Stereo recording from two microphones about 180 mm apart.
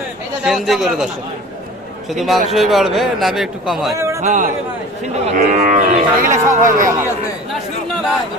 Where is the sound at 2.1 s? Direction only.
Centre (ahead or behind).